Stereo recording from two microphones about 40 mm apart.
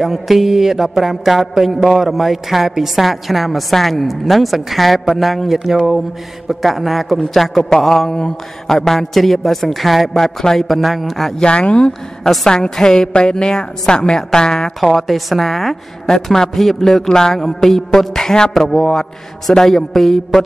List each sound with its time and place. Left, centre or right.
0.0 s mantra: centre
5.5 s speech: centre
6.6 s mantra: centre
11.4 s speech: left
12.4 s a woman's voice: centre
14.8 s a woman's voice: centre